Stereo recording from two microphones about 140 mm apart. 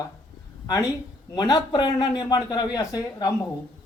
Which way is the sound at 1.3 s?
30° left (ahead or behind).